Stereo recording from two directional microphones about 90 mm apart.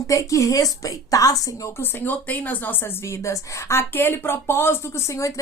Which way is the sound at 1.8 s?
20° left (ahead or behind).